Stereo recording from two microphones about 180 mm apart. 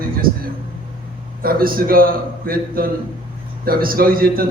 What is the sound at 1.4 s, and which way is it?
A man's voice, 55° right (ahead or behind).